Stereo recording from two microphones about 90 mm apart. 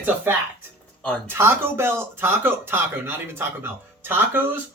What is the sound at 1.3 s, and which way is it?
Speech, 25° right (ahead or behind).